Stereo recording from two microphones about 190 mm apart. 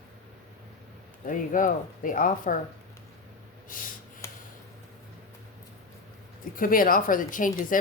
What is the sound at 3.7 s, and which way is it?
Speech, 45° left (ahead or behind).